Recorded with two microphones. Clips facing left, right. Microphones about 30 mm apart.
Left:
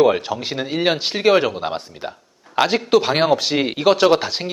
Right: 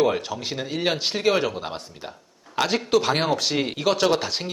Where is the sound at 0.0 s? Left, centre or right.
Centre.